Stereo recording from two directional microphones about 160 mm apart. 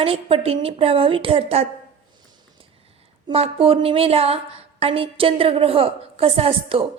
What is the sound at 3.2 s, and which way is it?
A woman's voice, 35° right (ahead or behind).